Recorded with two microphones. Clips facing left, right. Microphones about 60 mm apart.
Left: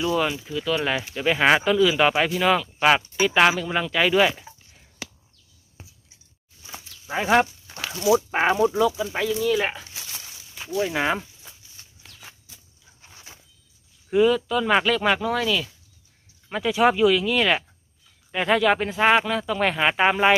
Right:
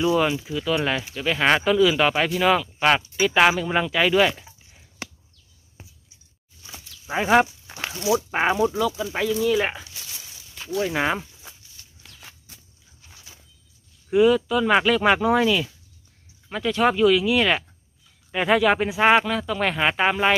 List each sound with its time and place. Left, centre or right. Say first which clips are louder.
0.0 s speech: right 3 dB; centre
0.9 s speech: left 2 dB; centre
7.1 s speech: right 1 dB; centre
11.8 s a sound: left 1 dB; left
13.0 s a sound: left 2 dB; left
14.1 s speech: right 2 dB; centre
16.4 s speech: left 1 dB; centre